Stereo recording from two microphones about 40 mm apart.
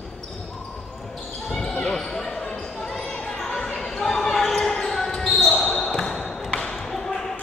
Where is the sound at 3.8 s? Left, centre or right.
Centre.